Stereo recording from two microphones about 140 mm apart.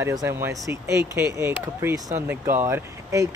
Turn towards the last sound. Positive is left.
turn(degrees=-20)  # may be behind; listen again after turning